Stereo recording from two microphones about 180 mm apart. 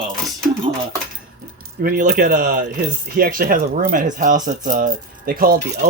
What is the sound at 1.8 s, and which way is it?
Speech, 55° right (ahead or behind).